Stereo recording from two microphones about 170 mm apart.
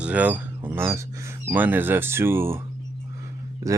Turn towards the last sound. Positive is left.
turn(degrees=-20)  # may be behind; listen again after turning